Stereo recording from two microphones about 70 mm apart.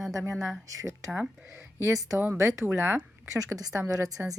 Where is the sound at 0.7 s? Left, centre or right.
Right.